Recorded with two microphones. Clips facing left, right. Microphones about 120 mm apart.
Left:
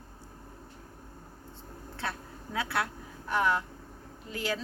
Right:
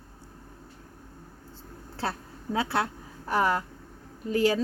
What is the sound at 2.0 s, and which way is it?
Speech, 30° right (ahead or behind).